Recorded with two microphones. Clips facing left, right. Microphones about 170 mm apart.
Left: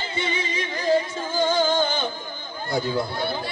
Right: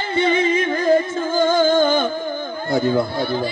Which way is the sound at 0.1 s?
55° right (ahead or behind).